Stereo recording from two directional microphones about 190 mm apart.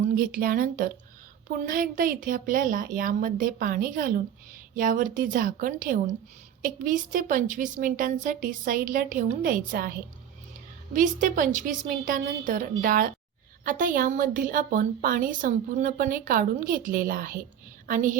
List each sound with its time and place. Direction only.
0.0 s a woman's voice: 50° right (ahead or behind)